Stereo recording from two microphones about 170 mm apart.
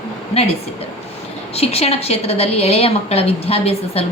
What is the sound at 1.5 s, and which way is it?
A woman's voice, 35° left (ahead or behind).